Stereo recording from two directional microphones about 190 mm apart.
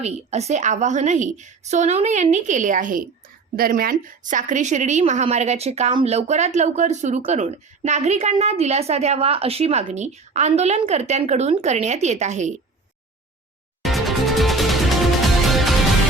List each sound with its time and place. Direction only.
0.0 s a woman's voice: 35° right (ahead or behind)
13.8 s music: centre (ahead or behind)